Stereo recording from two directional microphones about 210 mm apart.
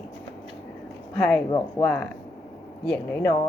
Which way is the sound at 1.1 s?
5° left (ahead or behind).